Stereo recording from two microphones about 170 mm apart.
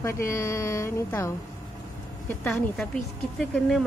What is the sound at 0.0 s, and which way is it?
Speech, 15° left (ahead or behind).